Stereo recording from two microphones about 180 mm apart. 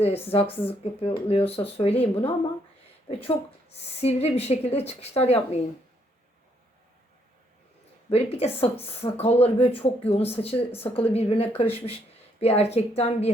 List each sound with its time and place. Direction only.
0.0 s a woman's voice: 35° left (ahead or behind)
8.1 s a woman's voice: 35° left (ahead or behind)